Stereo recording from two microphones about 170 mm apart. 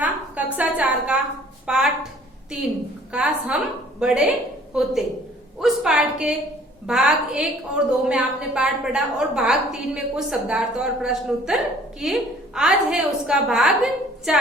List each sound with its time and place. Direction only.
0.0 s a sound: 10° right (ahead or behind)
1.6 s a woman's voice: 5° right (ahead or behind)
3.1 s a woman's voice: 5° right (ahead or behind)